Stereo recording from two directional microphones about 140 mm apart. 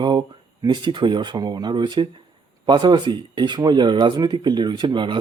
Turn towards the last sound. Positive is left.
turn(degrees=-35)  # may be behind; listen again after turning